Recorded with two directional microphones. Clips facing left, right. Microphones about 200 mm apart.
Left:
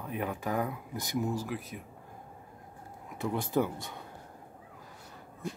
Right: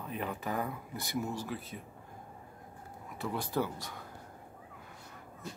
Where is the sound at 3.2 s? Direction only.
20° left (ahead or behind).